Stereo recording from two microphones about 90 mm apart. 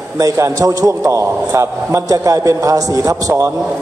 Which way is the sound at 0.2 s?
40° right (ahead or behind).